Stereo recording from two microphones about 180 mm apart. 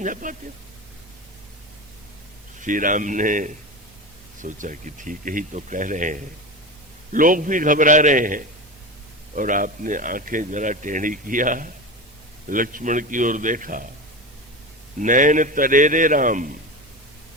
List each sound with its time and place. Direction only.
0.0 s speech: 45° right (ahead or behind)
2.6 s speech: 45° right (ahead or behind)
14.9 s speech: 45° right (ahead or behind)